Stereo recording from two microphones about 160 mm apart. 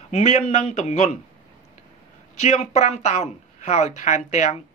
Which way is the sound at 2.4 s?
45° left (ahead or behind).